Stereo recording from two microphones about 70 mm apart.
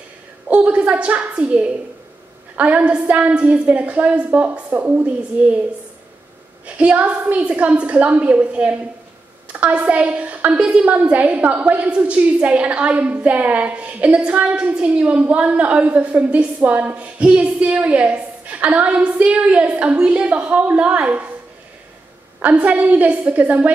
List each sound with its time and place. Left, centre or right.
0.5 s a sound: centre
2.5 s a woman's voice: centre
6.6 s a woman's voice: centre
22.4 s a woman's voice: right